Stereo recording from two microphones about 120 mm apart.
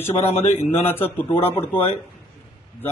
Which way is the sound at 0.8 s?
20° left (ahead or behind).